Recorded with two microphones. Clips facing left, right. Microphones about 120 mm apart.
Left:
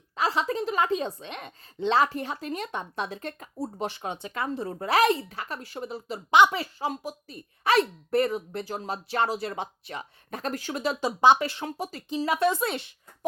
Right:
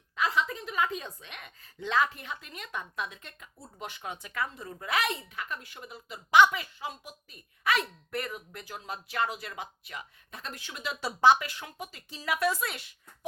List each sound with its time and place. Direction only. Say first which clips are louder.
0.2 s a woman's voice: left 4 dB; 30° left (ahead or behind)
10.3 s a woman's voice: left 11 dB; 40° left (ahead or behind)
11.0 s speech: left 2 dB; 15° left (ahead or behind)
11.3 s a woman's voice: left 9 dB; 35° left (ahead or behind)
12.0 s speech: left 5 dB; 25° left (ahead or behind)